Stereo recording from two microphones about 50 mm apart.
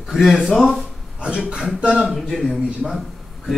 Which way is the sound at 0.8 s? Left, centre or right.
Centre.